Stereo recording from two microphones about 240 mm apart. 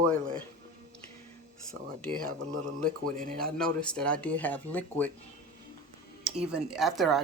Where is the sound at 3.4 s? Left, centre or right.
Centre.